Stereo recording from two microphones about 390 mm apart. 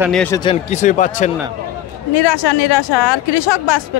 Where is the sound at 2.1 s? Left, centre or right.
Left.